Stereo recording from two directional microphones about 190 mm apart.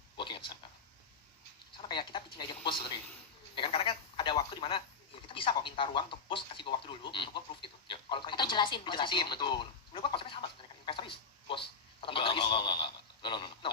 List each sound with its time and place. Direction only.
0.2 s a sound: 25° left (ahead or behind)
1.9 s speech: 25° left (ahead or behind)
10.8 s telephone: 25° left (ahead or behind)